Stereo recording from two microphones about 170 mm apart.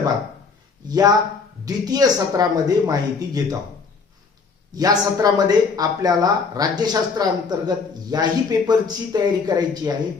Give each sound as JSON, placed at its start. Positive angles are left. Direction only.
{"t": 0.9, "sound": "speech", "side_deg": -20}
{"t": 4.7, "sound": "speech", "side_deg": -20}